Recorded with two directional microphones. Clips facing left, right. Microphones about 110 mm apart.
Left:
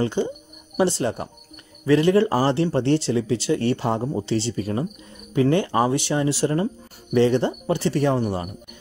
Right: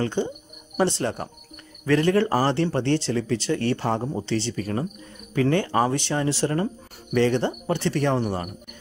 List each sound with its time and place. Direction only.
0.2 s speech: 10° left (ahead or behind)